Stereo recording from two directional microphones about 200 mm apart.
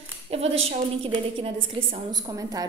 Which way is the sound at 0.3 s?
30° right (ahead or behind).